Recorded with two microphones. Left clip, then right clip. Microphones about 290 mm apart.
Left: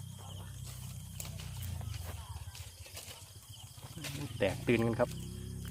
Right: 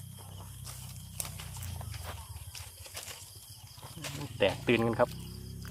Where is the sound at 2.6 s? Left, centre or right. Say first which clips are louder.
Right 7 dB; right.